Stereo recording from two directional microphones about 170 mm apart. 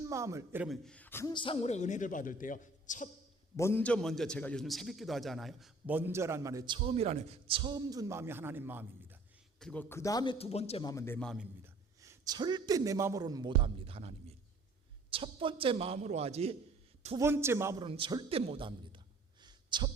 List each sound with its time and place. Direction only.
0.0 s a man's voice: 15° right (ahead or behind)
0.6 s a man's voice: centre (ahead or behind)
1.3 s a man's voice: 30° left (ahead or behind); by 3.1 s 50° left (ahead or behind)
3.6 s a man's voice: 10° left (ahead or behind); by 9.1 s 10° right (ahead or behind)
9.6 s a sound: 5° left (ahead or behind)
9.9 s speech: 20° left (ahead or behind)
10.3 s a man's voice: 35° left (ahead or behind)
10.8 s a man's voice: 15° left (ahead or behind)
11.6 s a man's voice: 20° right (ahead or behind); by 16.6 s 40° right (ahead or behind)
17.2 s a man's voice: 15° right (ahead or behind)
17.7 s a man's voice: 30° right (ahead or behind)